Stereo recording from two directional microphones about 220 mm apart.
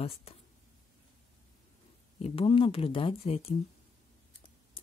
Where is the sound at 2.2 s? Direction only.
25° left (ahead or behind).